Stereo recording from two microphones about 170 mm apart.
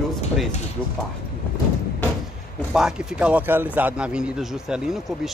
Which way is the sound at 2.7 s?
5° right (ahead or behind).